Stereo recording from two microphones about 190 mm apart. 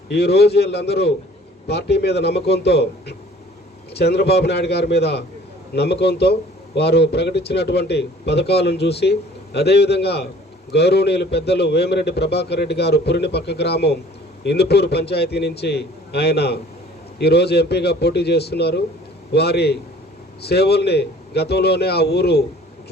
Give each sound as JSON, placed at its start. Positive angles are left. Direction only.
{"t": 0.1, "sound": "a man's voice", "side_deg": 60}
{"t": 3.9, "sound": "a man's voice", "side_deg": 60}